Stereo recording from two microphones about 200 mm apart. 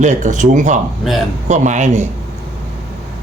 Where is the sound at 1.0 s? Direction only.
Centre (ahead or behind).